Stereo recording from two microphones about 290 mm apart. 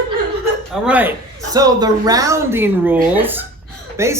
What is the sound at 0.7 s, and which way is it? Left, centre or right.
Speech, centre.